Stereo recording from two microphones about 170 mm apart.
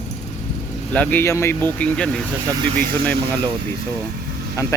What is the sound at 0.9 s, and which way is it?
Speech, 15° left (ahead or behind).